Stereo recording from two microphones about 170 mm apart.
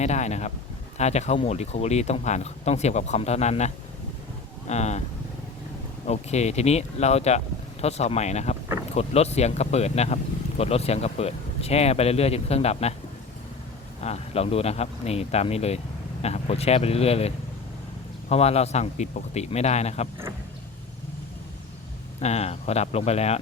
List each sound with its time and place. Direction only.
0.0 s speech: 40° left (ahead or behind)
4.7 s speech: 40° left (ahead or behind)
6.1 s speech: 40° left (ahead or behind)
14.0 s speech: 40° left (ahead or behind)
22.2 s speech: 40° left (ahead or behind)